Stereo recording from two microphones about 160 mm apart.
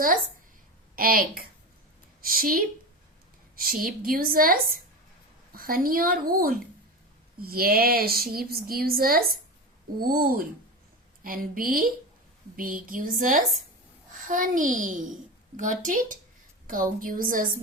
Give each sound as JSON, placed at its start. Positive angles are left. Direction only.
{"t": 0.9, "sound": "a woman's voice", "side_deg": -65}